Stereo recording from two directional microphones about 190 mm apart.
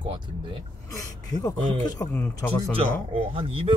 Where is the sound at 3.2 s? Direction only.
30° right (ahead or behind).